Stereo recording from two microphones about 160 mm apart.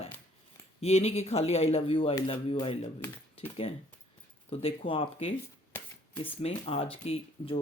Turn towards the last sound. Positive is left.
turn(degrees=35)  # may be behind; listen again after turning